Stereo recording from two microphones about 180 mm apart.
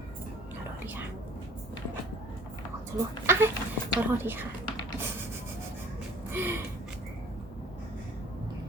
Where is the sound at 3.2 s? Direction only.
15° right (ahead or behind).